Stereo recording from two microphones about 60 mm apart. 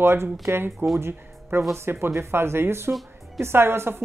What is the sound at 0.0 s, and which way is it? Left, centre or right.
A woman's voice, right.